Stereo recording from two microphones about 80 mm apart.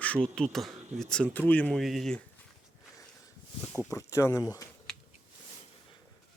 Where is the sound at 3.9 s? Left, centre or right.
Left.